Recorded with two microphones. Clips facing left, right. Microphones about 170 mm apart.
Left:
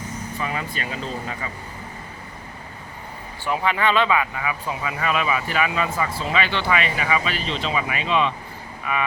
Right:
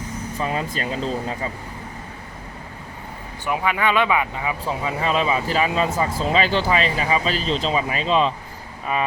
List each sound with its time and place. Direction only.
0.3 s speech: 35° right (ahead or behind)
3.4 s speech: 10° right (ahead or behind); by 9.0 s 30° right (ahead or behind)